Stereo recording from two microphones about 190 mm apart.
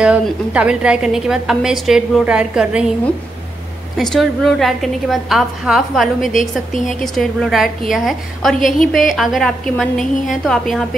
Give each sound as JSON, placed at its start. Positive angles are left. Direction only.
{"t": 0.0, "sound": "a woman's voice", "side_deg": -5}
{"t": 4.0, "sound": "a woman's voice", "side_deg": 0}
{"t": 6.3, "sound": "a woman's voice", "side_deg": 40}
{"t": 7.0, "sound": "a woman's voice", "side_deg": 0}